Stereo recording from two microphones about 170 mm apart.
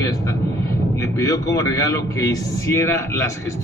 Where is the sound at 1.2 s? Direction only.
20° left (ahead or behind).